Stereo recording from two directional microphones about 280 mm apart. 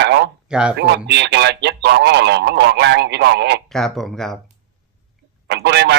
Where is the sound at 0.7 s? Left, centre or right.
Right.